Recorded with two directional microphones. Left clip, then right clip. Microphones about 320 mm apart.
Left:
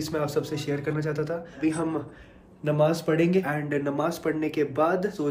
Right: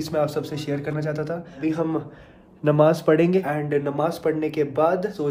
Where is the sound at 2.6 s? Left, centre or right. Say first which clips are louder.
Right 6 dB; right.